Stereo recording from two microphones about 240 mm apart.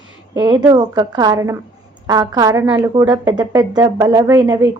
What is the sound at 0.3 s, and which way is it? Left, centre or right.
A woman's voice, centre.